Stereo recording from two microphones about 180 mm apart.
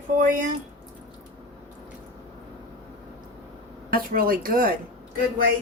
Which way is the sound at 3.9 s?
55° right (ahead or behind).